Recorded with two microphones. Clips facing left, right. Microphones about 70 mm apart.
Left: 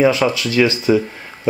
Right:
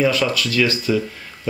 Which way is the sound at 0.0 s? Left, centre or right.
Left.